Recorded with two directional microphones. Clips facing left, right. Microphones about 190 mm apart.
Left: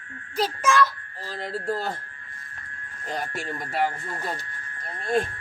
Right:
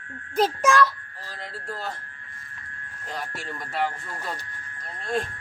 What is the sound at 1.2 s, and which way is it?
Speech, 35° left (ahead or behind).